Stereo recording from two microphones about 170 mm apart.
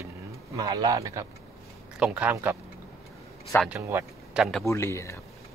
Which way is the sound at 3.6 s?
15° right (ahead or behind).